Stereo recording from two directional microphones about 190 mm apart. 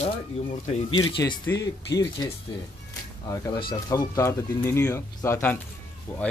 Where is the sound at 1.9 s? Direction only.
20° left (ahead or behind).